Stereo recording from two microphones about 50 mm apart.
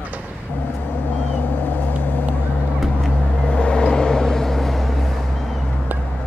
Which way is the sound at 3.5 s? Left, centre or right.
Centre.